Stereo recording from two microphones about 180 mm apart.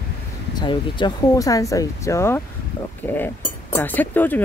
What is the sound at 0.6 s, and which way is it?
Speech, 25° left (ahead or behind).